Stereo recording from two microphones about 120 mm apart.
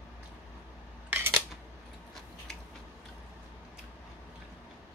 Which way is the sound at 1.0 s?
20° right (ahead or behind).